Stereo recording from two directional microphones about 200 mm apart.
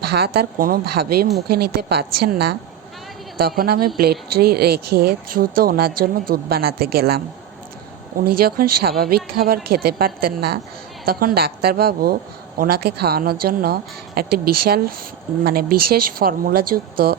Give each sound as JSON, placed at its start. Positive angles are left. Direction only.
{"t": 0.0, "sound": "speech", "side_deg": -55}
{"t": 3.6, "sound": "speech", "side_deg": -50}
{"t": 8.2, "sound": "speech", "side_deg": -50}